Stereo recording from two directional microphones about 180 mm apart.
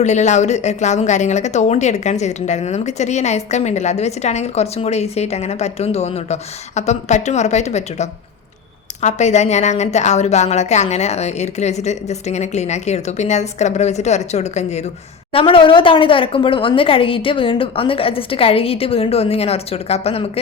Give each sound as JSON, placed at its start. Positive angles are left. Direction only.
{"t": 0.0, "sound": "a woman's voice", "side_deg": 40}